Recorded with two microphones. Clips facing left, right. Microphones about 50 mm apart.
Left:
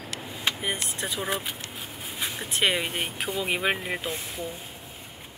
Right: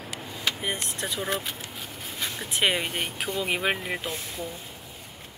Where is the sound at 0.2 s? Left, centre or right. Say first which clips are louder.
Left 1 dB; centre.